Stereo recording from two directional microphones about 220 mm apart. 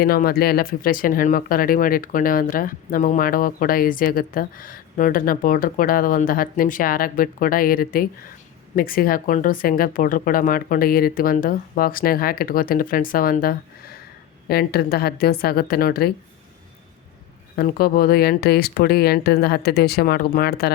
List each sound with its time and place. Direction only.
0.0 s speech: 45° left (ahead or behind)
17.6 s speech: 40° left (ahead or behind)